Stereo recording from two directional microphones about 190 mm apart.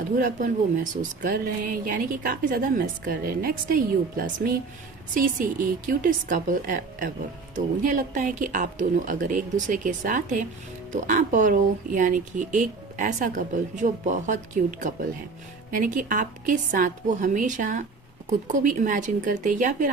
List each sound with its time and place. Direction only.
0.2 s speech: 45° right (ahead or behind)
5.1 s speech: 45° right (ahead or behind)